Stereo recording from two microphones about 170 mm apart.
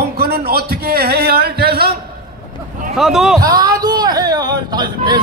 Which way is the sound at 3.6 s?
25° right (ahead or behind).